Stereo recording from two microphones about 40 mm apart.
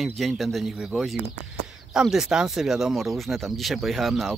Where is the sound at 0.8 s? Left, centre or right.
Centre.